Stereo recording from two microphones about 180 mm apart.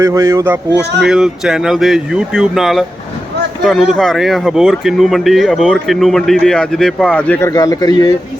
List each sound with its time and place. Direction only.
0.0 s speech: 15° right (ahead or behind)
1.0 s speech: 5° right (ahead or behind)
7.5 s speech: 20° left (ahead or behind)